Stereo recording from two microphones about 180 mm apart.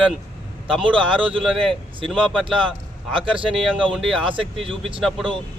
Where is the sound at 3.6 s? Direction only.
Centre (ahead or behind).